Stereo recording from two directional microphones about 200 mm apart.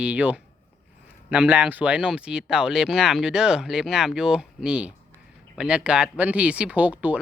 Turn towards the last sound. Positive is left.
turn(degrees=-5)  # may be behind; listen again after turning